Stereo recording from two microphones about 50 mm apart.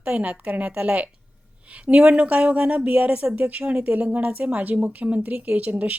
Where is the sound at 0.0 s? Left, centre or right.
Right.